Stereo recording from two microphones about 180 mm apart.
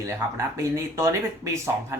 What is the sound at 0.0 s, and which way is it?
Speech, 15° right (ahead or behind).